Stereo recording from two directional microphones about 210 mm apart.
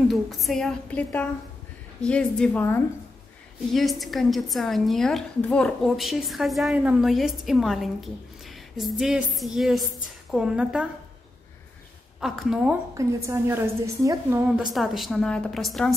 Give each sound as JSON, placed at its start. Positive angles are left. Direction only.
{"t": 0.1, "sound": "a woman's voice", "side_deg": 0}
{"t": 12.2, "sound": "a woman's voice", "side_deg": 0}
{"t": 12.9, "sound": "a woman's voice", "side_deg": -15}
{"t": 14.7, "sound": "a woman's voice", "side_deg": 0}